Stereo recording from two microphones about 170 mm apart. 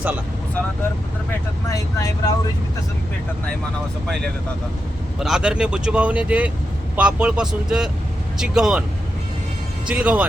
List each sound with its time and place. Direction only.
1.7 s speech: 20° left (ahead or behind)
5.2 s speech: 5° right (ahead or behind)
9.8 s speech: 10° right (ahead or behind)